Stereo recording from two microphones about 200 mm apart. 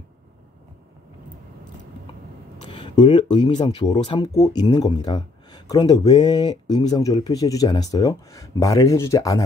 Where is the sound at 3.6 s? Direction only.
20° left (ahead or behind).